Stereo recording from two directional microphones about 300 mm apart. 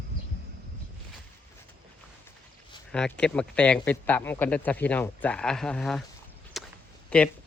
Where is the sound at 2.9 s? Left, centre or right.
Centre.